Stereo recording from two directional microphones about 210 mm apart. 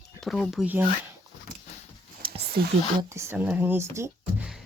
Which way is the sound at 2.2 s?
25° right (ahead or behind).